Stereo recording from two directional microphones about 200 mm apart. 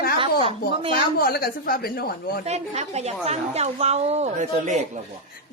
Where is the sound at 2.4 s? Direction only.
35° right (ahead or behind).